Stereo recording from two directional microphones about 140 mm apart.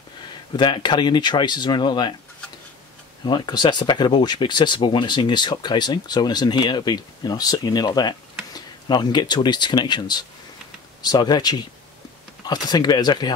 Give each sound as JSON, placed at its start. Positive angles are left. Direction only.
{"t": 0.6, "sound": "speech", "side_deg": 35}
{"t": 3.3, "sound": "speech", "side_deg": 30}